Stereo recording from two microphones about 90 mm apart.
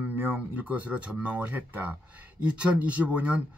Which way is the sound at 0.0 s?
20° right (ahead or behind).